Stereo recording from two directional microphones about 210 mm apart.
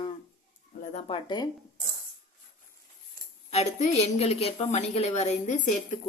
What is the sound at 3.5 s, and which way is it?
A woman's voice, 30° left (ahead or behind).